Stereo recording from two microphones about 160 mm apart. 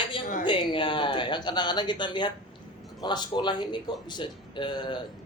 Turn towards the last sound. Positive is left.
turn(degrees=30)  # may be behind; listen again after turning